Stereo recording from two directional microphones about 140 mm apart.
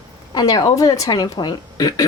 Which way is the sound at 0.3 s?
25° left (ahead or behind).